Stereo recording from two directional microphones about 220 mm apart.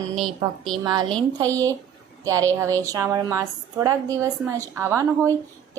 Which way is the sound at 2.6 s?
15° right (ahead or behind).